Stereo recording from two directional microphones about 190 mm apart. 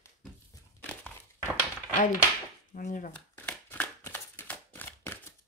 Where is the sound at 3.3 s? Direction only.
10° left (ahead or behind).